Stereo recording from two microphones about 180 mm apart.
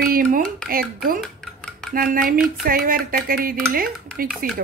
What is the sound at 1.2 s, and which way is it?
Dishes, centre (ahead or behind).